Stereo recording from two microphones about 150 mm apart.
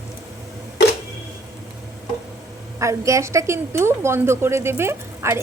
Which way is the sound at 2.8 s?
20° right (ahead or behind).